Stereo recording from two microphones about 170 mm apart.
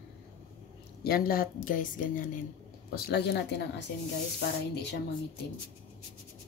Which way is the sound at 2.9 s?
70° left (ahead or behind).